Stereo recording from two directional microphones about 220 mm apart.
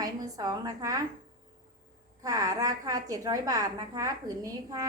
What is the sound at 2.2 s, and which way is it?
A woman's voice, 15° right (ahead or behind).